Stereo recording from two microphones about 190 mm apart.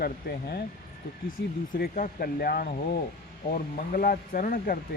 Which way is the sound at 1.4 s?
65° left (ahead or behind).